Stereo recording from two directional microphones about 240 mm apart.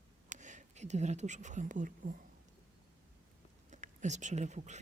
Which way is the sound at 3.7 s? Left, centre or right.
Right.